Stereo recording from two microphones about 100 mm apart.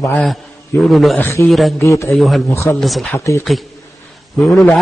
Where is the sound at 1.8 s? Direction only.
30° left (ahead or behind).